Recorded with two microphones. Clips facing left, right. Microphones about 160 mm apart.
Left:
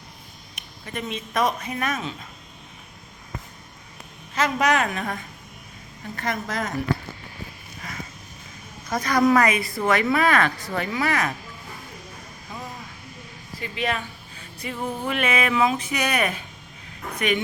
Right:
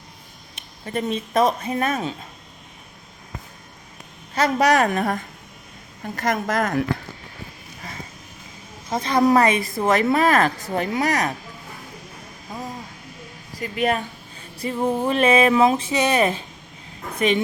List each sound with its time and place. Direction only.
0.5 s speech: 35° right (ahead or behind)
4.4 s a woman's voice: 35° right (ahead or behind); by 6.7 s 55° right (ahead or behind)
7.8 s vehicle: 30° right (ahead or behind)
8.9 s a woman's voice: 25° right (ahead or behind)
9.7 s speech: 40° right (ahead or behind)
13.6 s a woman's voice: 45° right (ahead or behind)
14.6 s a woman's voice: 35° right (ahead or behind)